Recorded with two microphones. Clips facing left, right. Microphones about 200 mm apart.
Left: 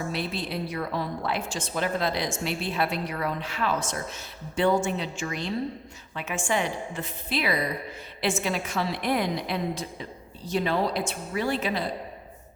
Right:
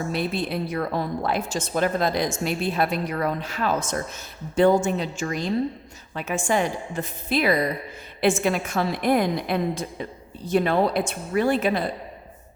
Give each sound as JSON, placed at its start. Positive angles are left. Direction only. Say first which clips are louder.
{"t": 0.1, "sound": "a woman's voice", "louder": "right 5 dB", "side_deg": -50}